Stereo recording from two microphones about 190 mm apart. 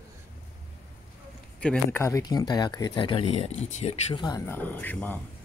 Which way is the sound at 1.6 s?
10° left (ahead or behind).